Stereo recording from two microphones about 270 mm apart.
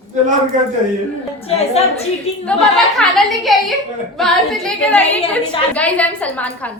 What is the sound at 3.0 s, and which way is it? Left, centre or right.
Female singing, centre.